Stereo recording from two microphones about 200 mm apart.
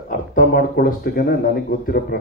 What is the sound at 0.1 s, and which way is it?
Speech, 45° left (ahead or behind).